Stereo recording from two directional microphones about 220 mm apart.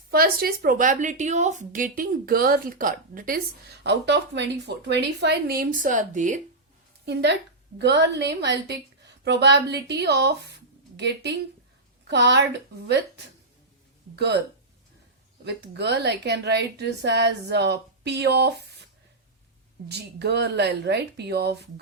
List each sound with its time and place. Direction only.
0.1 s a woman's voice: 40° right (ahead or behind)
3.8 s speech: 50° right (ahead or behind); by 6.4 s 35° right (ahead or behind)
7.0 s a woman's voice: 50° right (ahead or behind)
14.2 s speech: 50° right (ahead or behind)
15.4 s speech: 50° right (ahead or behind)
19.9 s speech: 50° right (ahead or behind)